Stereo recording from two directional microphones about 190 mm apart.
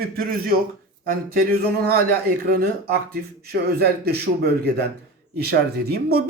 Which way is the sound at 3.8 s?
55° right (ahead or behind).